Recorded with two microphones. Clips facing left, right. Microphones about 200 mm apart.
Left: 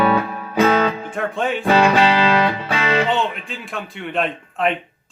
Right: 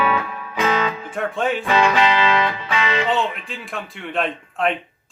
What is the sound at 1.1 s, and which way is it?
Speech, centre (ahead or behind).